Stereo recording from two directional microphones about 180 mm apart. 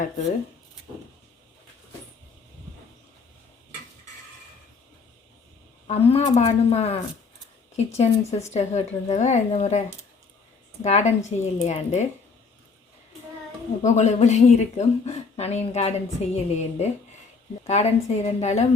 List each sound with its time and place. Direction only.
5.9 s a woman's voice: 35° left (ahead or behind)
10.8 s a woman's voice: 40° left (ahead or behind)
13.8 s a woman's voice: 40° left (ahead or behind)